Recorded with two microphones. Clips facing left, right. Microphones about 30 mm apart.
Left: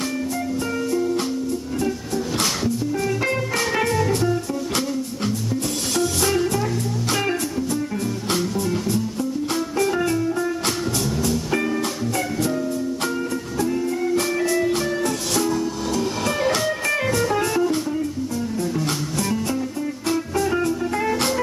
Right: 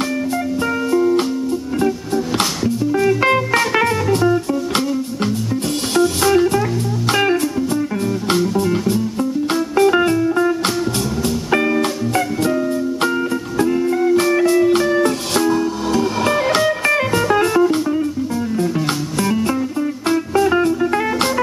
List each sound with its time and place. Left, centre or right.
0.9 s music: right
2.9 s music: right
5.9 s music: right
13.6 s music: right